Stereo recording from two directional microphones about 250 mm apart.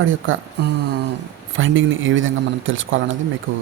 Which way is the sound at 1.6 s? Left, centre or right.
Right.